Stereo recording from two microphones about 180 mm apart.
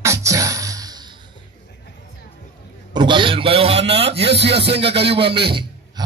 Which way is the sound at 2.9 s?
25° right (ahead or behind).